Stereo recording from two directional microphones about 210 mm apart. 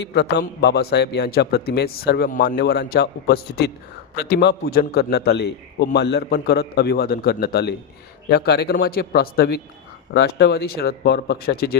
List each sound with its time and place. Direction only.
0.0 s a man's voice: 55° left (ahead or behind)